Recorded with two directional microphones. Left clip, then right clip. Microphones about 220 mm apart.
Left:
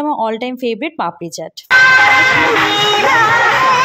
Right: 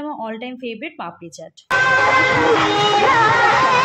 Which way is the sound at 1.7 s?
30° right (ahead or behind).